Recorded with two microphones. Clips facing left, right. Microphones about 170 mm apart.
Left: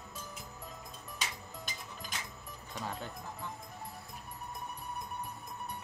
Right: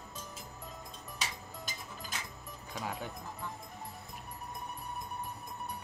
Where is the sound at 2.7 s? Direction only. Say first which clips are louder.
Right 1 dB; 10° right (ahead or behind).